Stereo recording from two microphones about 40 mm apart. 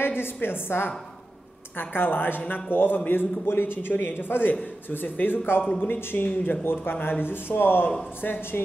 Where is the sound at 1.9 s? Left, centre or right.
Left.